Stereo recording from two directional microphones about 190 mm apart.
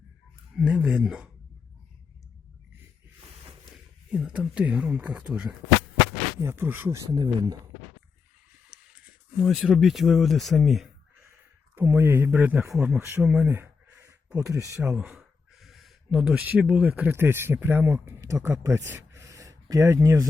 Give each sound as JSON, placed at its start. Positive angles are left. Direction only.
{"t": 0.5, "sound": "speech", "side_deg": -5}
{"t": 3.7, "sound": "speech", "side_deg": 0}
{"t": 9.4, "sound": "speech", "side_deg": 0}
{"t": 11.3, "sound": "speech", "side_deg": -15}
{"t": 19.1, "sound": "a sound", "side_deg": -15}